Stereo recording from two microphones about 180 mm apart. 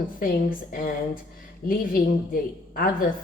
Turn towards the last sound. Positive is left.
turn(degrees=50)  # may be behind; listen again after turning